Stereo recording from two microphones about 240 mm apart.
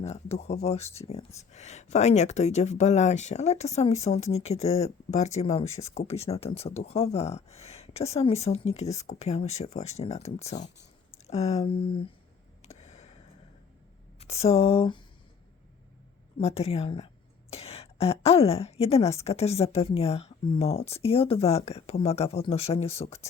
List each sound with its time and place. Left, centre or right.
0.0 s a woman's voice: left
12.6 s a sound: left
14.2 s speech: left
16.4 s a woman's voice: left